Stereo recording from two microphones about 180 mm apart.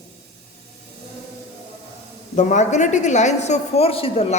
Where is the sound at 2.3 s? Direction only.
45° left (ahead or behind).